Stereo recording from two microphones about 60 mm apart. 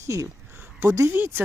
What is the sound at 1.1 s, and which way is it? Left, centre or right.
Speech, right.